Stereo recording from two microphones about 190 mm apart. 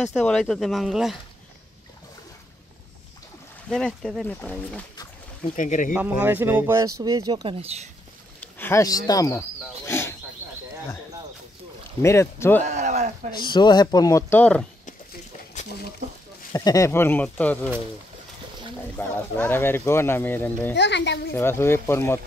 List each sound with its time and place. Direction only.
0.2 s speech: 5° left (ahead or behind)
3.7 s speech: centre (ahead or behind)
5.6 s speech: 45° left (ahead or behind)
5.9 s speech: 10° right (ahead or behind); by 7.9 s 35° right (ahead or behind)
8.4 s speech: 10° left (ahead or behind)
9.8 s wild animals: 15° left (ahead or behind)
12.0 s speech: 15° left (ahead or behind)
12.6 s speech: 40° right (ahead or behind)
13.4 s speech: 25° left (ahead or behind); by 14.7 s 5° left (ahead or behind)
15.6 s a sound: 40° left (ahead or behind)
16.5 s speech: 15° left (ahead or behind)
18.9 s speech: 10° left (ahead or behind)
20.7 s a child's voice: 65° left (ahead or behind)
21.4 s speech: 10° left (ahead or behind)